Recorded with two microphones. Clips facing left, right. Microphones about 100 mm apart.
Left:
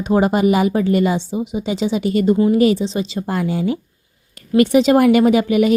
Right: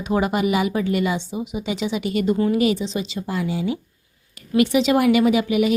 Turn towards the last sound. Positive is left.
turn(degrees=45)  # may be behind; listen again after turning